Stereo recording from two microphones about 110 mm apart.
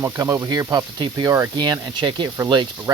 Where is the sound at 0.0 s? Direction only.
35° right (ahead or behind).